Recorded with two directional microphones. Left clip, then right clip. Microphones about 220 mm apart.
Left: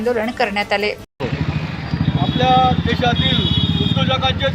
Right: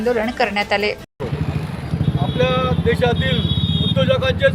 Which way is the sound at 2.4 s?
20° right (ahead or behind).